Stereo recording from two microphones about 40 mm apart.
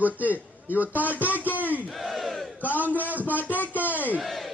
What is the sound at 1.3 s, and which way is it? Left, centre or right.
Speech, left.